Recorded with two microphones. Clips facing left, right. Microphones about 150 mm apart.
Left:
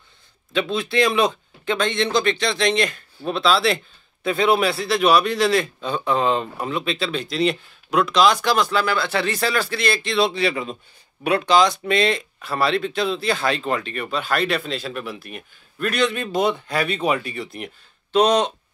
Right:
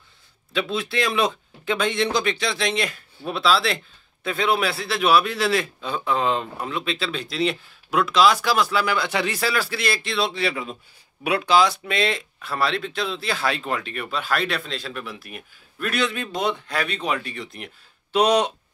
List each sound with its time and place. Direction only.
0.5 s speech: 5° right (ahead or behind)
18.1 s speech: 10° right (ahead or behind)